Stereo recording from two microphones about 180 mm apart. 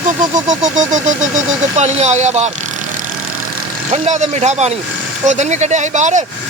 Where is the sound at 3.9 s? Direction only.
40° right (ahead or behind).